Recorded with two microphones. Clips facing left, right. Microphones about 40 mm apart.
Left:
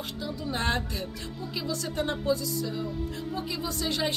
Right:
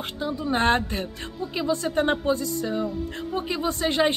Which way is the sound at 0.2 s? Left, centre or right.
Right.